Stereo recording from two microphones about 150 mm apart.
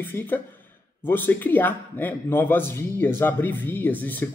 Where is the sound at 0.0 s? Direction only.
15° left (ahead or behind).